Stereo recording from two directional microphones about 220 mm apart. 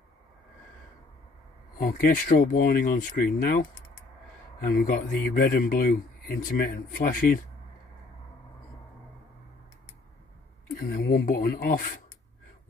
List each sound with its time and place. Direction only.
1.8 s speech: 40° left (ahead or behind)
10.8 s speech: 40° left (ahead or behind)